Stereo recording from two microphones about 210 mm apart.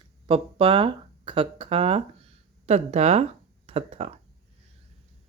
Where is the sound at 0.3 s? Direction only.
25° right (ahead or behind).